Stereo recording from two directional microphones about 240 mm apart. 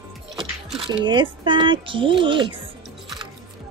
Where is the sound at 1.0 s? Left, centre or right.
Centre.